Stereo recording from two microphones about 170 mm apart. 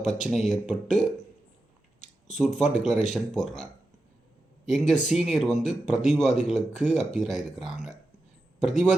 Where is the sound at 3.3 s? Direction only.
5° left (ahead or behind).